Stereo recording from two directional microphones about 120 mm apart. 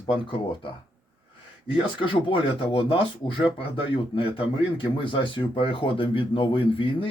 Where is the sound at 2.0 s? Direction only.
45° left (ahead or behind).